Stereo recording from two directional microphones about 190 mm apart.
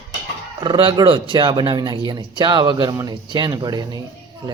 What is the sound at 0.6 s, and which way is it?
A man's voice, 25° right (ahead or behind).